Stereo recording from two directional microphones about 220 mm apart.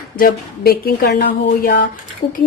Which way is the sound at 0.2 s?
45° left (ahead or behind).